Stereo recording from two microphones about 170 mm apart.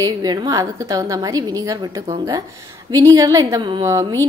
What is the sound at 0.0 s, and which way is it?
A woman's voice, 25° right (ahead or behind).